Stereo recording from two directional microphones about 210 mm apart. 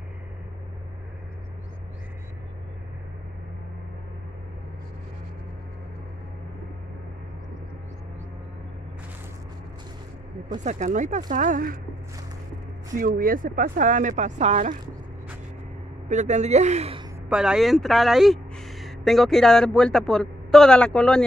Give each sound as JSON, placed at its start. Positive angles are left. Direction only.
{"t": 10.6, "sound": "speech", "side_deg": -35}
{"t": 12.9, "sound": "speech", "side_deg": -40}
{"t": 16.1, "sound": "speech", "side_deg": -35}
{"t": 17.3, "sound": "speech", "side_deg": -5}